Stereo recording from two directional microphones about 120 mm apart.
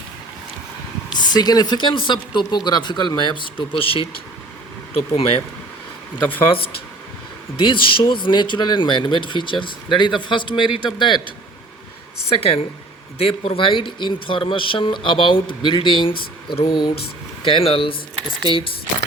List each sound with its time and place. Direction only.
1.1 s speech: 35° left (ahead or behind)
5.1 s speech: 50° left (ahead or behind)
6.1 s speech: 15° left (ahead or behind)
7.6 s speech: 45° left (ahead or behind)
12.3 s speech: 55° left (ahead or behind)